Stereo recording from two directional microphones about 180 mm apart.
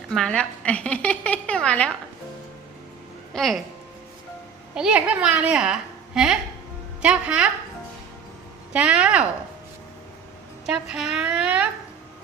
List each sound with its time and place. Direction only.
0.1 s a woman's voice: 5° left (ahead or behind)
3.3 s a woman's voice: centre (ahead or behind)
4.7 s a woman's voice: 5° right (ahead or behind)
8.7 s a woman's voice: 5° right (ahead or behind)
10.7 s a woman's voice: 5° right (ahead or behind)